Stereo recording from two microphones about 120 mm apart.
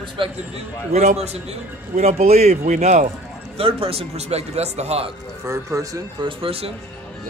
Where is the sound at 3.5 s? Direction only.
50° right (ahead or behind).